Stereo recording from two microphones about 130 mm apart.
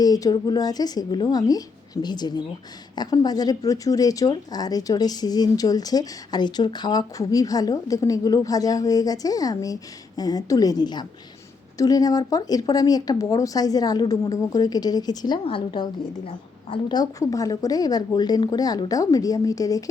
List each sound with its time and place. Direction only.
0.0 s a woman's voice: 30° left (ahead or behind); by 16.8 s 45° left (ahead or behind)
16.9 s speech: 30° left (ahead or behind)